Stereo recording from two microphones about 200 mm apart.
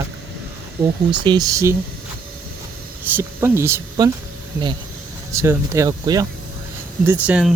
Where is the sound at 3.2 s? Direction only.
10° right (ahead or behind).